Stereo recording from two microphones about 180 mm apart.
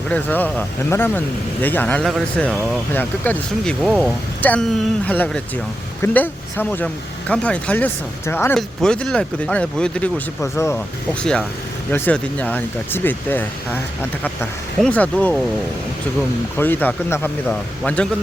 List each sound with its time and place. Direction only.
0.1 s speech: 10° left (ahead or behind)
10.4 s speech: 15° left (ahead or behind)
14.8 s speech: 5° left (ahead or behind)
16.6 s speech: 10° left (ahead or behind)